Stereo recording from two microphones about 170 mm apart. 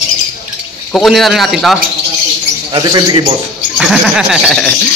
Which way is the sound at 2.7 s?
25° right (ahead or behind).